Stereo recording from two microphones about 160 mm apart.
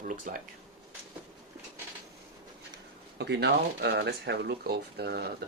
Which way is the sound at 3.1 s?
90° right.